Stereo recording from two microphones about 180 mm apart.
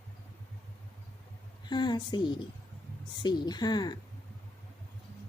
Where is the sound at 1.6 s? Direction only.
25° left (ahead or behind).